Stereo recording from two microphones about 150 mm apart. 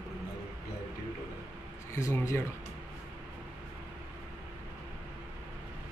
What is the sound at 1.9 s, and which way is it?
Speech, 20° left (ahead or behind).